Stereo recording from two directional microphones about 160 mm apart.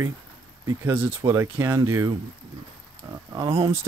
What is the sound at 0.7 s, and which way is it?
Speech, 15° right (ahead or behind).